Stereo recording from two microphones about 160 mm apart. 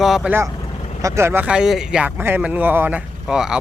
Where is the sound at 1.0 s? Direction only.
15° right (ahead or behind).